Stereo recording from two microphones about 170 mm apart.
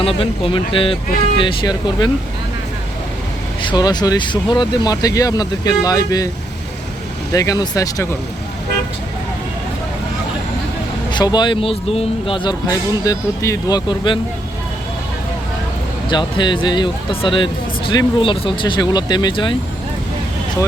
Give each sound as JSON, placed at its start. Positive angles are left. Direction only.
{"t": 0.0, "sound": "speech", "side_deg": 35}
{"t": 3.7, "sound": "speech", "side_deg": 25}
{"t": 7.3, "sound": "speech", "side_deg": 20}
{"t": 11.1, "sound": "speech", "side_deg": 25}
{"t": 16.0, "sound": "speech", "side_deg": 25}